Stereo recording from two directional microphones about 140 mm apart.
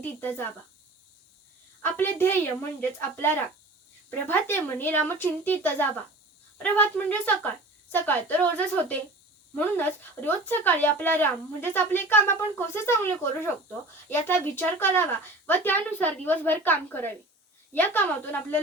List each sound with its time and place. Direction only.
0.0 s speech: 15° left (ahead or behind)
1.8 s speech: 15° left (ahead or behind)